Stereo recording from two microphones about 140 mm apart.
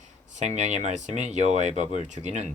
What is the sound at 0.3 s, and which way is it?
Speech, 55° right (ahead or behind).